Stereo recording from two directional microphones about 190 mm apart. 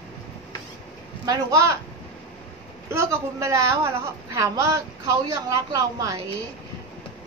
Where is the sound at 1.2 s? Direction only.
20° right (ahead or behind).